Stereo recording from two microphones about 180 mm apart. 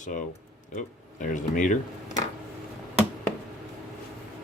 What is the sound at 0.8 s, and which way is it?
Speech, 45° left (ahead or behind).